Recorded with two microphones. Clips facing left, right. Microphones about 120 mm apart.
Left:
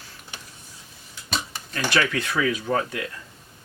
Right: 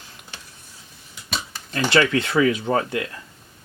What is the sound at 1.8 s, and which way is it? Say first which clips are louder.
Speech: right 5 dB; 25° right (ahead or behind).